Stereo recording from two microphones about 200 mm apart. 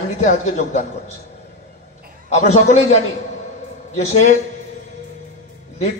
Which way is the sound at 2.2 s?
35° left (ahead or behind).